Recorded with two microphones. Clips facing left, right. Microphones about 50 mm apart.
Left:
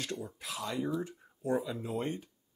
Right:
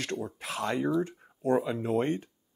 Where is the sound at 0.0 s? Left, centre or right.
Right.